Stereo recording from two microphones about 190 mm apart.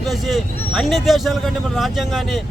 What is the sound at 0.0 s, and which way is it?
Speech, centre (ahead or behind).